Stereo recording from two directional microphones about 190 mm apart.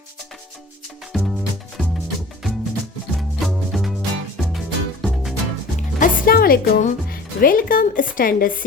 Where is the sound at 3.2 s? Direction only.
Centre (ahead or behind).